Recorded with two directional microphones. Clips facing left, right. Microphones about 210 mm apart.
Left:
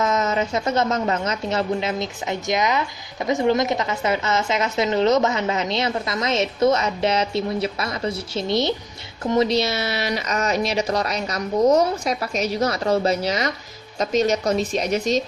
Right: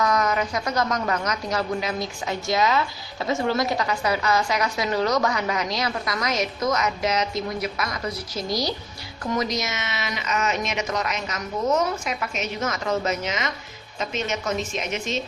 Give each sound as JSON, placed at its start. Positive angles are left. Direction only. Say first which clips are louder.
{"t": 0.0, "sound": "a woman's voice", "louder": "left 1 dB", "side_deg": 25}